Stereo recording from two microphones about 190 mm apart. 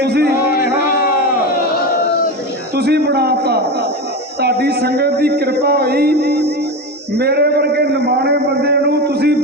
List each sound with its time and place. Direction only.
0.0 s music: 60° right (ahead or behind)
0.5 s music: 50° left (ahead or behind)
2.7 s a sound: 60° right (ahead or behind)